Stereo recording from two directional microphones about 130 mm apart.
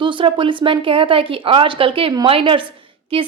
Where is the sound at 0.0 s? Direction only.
40° right (ahead or behind).